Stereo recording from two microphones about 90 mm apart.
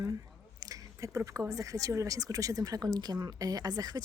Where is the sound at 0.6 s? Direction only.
40° right (ahead or behind).